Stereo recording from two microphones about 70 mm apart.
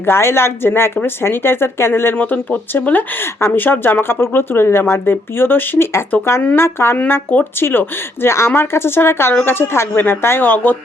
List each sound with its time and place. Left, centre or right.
0.0 s speech: left
2.1 s speech: left